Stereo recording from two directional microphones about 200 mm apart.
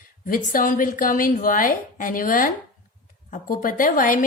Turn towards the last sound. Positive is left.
turn(degrees=40)  # may be behind; listen again after turning